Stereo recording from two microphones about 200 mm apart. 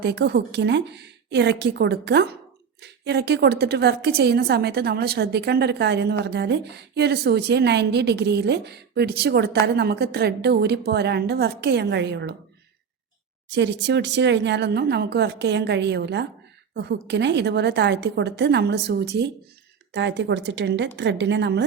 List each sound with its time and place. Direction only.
0.0 s a woman's voice: 55° right (ahead or behind)
13.5 s a woman's voice: 60° right (ahead or behind)